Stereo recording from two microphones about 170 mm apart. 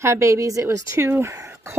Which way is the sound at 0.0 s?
15° right (ahead or behind).